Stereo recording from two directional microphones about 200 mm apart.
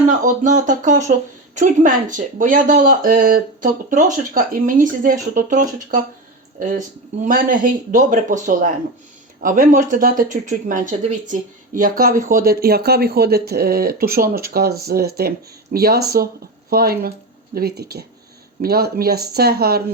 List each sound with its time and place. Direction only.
0.3 s speech: 40° right (ahead or behind)